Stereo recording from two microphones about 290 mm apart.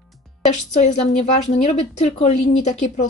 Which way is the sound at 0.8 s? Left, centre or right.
Left.